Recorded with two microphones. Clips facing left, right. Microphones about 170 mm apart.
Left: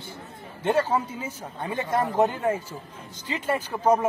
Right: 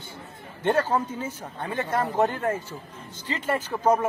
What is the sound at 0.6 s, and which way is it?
Speech, 10° left (ahead or behind).